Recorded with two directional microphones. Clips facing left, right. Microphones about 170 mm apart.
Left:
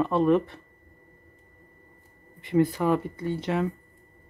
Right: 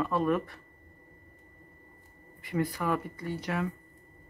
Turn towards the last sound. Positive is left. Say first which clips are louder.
# left 6 dB
turn(degrees=25)  # may be behind; listen again after turning